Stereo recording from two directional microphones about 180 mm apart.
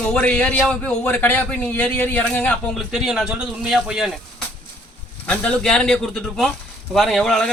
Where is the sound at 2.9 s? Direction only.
5° right (ahead or behind).